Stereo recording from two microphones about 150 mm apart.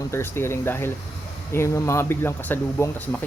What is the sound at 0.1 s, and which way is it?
Speech, 15° left (ahead or behind).